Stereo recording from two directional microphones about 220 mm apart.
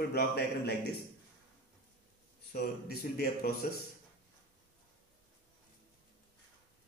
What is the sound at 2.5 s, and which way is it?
Speech, 45° left (ahead or behind).